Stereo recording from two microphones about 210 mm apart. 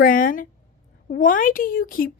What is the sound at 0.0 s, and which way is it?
Speech, 40° left (ahead or behind).